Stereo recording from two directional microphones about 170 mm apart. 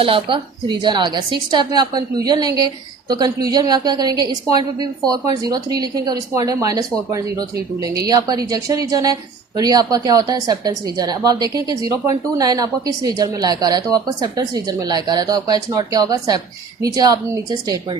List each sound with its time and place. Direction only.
0.0 s a woman's voice: 30° right (ahead or behind)